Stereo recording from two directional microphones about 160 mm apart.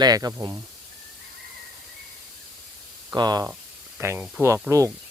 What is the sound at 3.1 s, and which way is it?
Speech, 25° right (ahead or behind).